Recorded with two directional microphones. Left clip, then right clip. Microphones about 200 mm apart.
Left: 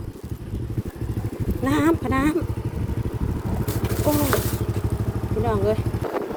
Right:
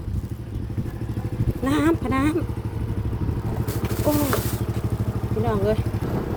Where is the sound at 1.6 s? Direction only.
Centre (ahead or behind).